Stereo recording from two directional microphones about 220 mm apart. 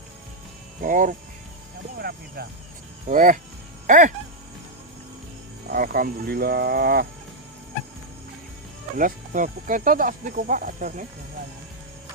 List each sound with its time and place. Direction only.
0.8 s speech: 35° right (ahead or behind)
5.6 s speech: 40° right (ahead or behind)
9.0 s speech: 40° right (ahead or behind)